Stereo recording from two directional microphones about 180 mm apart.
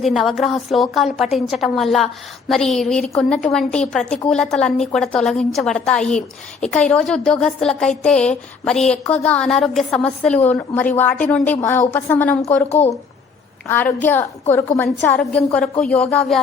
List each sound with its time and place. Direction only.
0.0 s a woman's voice: centre (ahead or behind)
12.5 s speech: 35° left (ahead or behind)
13.7 s a woman's voice: 10° left (ahead or behind)